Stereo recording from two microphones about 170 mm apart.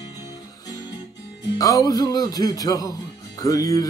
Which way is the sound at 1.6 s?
20° left (ahead or behind).